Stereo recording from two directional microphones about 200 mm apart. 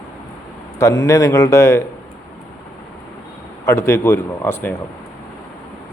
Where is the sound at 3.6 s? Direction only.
15° left (ahead or behind).